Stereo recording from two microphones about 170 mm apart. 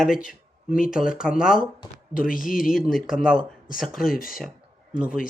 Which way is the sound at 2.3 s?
55° left (ahead or behind).